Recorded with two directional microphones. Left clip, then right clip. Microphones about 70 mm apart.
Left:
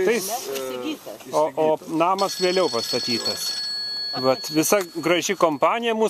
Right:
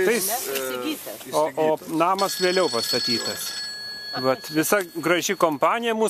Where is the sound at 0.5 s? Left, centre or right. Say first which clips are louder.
Right 1 dB; centre.